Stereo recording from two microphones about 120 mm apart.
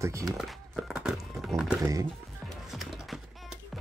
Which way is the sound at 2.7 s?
5° right (ahead or behind).